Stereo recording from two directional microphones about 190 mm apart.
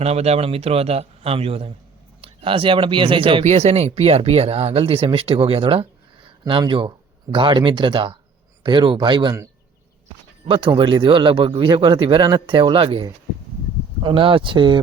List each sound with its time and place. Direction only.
0.0 s a man's voice: 35° right (ahead or behind)